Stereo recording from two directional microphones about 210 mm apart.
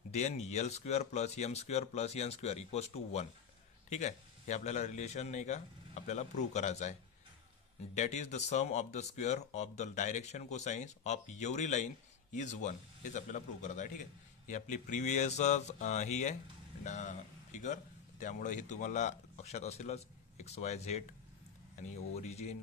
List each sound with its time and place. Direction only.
0.1 s speech: 30° left (ahead or behind)